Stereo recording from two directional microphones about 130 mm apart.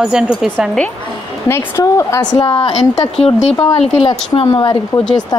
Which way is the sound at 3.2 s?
50° left (ahead or behind).